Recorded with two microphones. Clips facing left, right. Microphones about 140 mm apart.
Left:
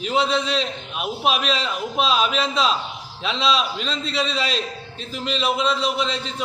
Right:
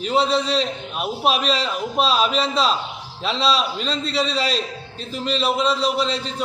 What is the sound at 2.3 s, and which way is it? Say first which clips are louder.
A man's voice: right 1 dB; 35° right (ahead or behind).